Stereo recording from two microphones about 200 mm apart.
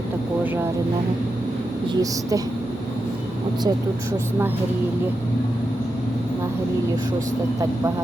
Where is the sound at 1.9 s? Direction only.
15° right (ahead or behind).